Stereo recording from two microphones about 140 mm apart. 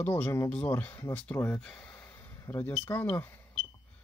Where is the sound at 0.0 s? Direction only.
15° left (ahead or behind).